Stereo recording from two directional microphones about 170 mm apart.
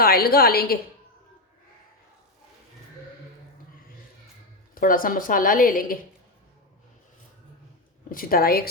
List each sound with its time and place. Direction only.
0.0 s a woman's voice: 65° left (ahead or behind)
4.7 s a woman's voice: 55° left (ahead or behind)
8.1 s a woman's voice: 60° left (ahead or behind)